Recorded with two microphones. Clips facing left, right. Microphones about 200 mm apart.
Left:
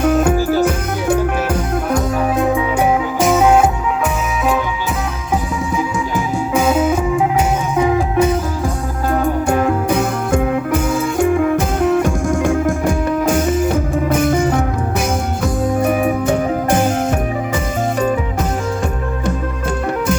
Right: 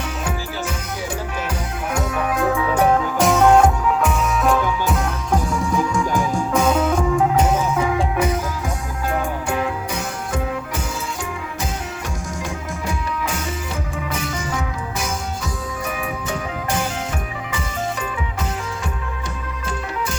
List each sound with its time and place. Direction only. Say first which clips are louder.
0.0 s music: left 13 dB; 50° left (ahead or behind)
0.6 s music: left 10 dB; 55° left (ahead or behind)
2.3 s music: left 1 dB; 20° left (ahead or behind); by 3.7 s 5° left (ahead or behind)
5.3 s music: left 1 dB; 5° left (ahead or behind)
8.1 s music: left 6 dB; 30° left (ahead or behind)
9.1 s music: left 8 dB; 40° left (ahead or behind)